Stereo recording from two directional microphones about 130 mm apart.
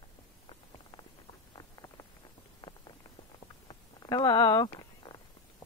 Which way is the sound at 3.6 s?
35° left (ahead or behind).